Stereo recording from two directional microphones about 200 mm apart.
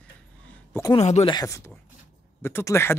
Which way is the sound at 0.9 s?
30° left (ahead or behind).